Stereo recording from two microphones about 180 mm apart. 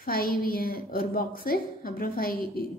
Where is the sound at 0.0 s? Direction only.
55° left (ahead or behind).